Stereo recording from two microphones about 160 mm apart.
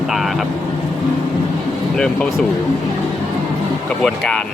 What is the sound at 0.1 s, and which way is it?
Speech, centre (ahead or behind).